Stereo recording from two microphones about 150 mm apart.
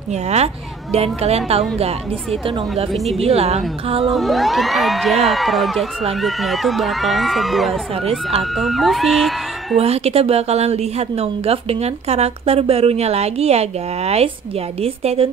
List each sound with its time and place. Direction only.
0.1 s a woman's voice: 45° right (ahead or behind)
2.9 s speech: centre (ahead or behind)
3.2 s a woman's voice: 45° right (ahead or behind)
4.1 s speech: centre (ahead or behind)
9.8 s a woman's voice: 45° right (ahead or behind)